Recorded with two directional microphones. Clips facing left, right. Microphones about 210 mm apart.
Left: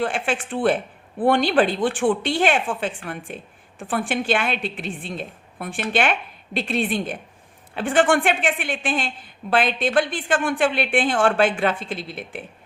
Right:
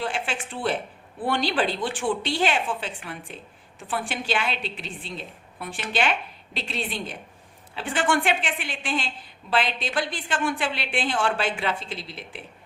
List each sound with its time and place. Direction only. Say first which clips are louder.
0.0 s a woman's voice: left 6 dB; 50° left (ahead or behind)